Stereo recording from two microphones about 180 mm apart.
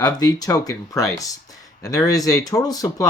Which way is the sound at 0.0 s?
20° left (ahead or behind).